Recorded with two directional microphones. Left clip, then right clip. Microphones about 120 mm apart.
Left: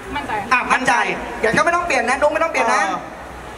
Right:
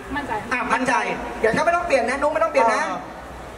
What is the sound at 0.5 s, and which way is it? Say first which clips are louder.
A woman's voice: left 5 dB; 20° left (ahead or behind).